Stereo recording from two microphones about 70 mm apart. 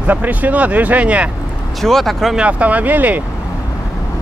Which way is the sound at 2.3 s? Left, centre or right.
Centre.